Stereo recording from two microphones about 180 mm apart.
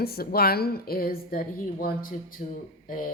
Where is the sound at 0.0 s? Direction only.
60° left (ahead or behind).